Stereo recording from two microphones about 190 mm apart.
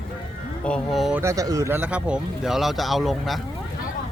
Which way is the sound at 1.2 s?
15° right (ahead or behind).